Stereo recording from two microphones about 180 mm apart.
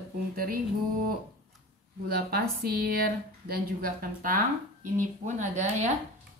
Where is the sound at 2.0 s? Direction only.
60° right (ahead or behind).